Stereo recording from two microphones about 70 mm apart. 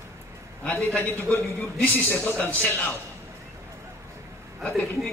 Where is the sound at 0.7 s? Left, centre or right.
Left.